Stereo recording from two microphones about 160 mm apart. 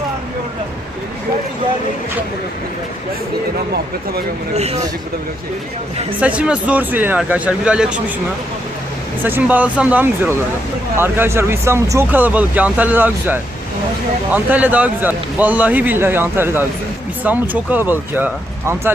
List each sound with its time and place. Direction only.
4.5 s speech: 45° right (ahead or behind)
6.1 s speech: 10° right (ahead or behind)
9.2 s speech: 10° right (ahead or behind)